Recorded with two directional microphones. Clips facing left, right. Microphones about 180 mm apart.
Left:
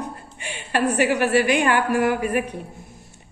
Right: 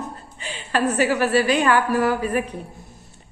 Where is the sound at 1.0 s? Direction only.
15° left (ahead or behind).